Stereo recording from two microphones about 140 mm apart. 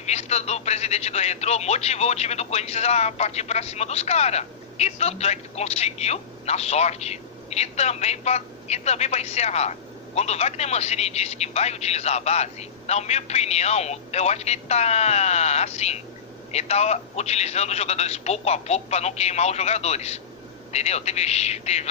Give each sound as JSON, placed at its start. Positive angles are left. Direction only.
{"t": 0.0, "sound": "speech", "side_deg": 50}